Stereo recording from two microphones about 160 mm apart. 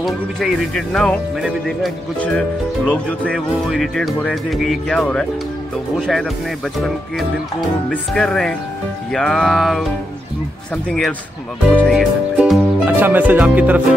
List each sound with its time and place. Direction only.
0.0 s speech: centre (ahead or behind)
7.9 s speech: 5° left (ahead or behind)
10.9 s speech: centre (ahead or behind)
12.8 s music: 10° right (ahead or behind)